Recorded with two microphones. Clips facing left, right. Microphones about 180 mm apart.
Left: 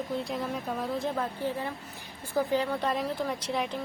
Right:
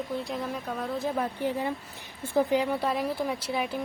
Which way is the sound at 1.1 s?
15° right (ahead or behind).